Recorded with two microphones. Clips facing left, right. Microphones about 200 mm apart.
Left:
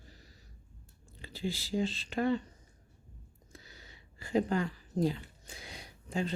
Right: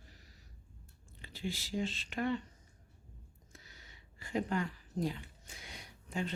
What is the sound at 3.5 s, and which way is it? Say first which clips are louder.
Speech: left 6 dB; 30° left (ahead or behind).